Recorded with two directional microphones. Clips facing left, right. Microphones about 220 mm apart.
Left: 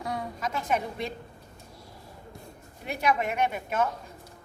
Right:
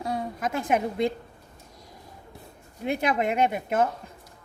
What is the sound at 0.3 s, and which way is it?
Speech, 50° right (ahead or behind).